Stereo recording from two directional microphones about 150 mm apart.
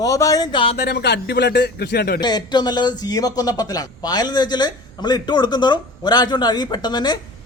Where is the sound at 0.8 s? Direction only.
90° left.